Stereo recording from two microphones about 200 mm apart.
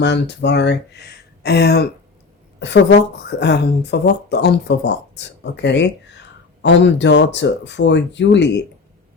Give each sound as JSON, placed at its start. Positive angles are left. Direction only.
{"t": 0.0, "sound": "speech", "side_deg": 60}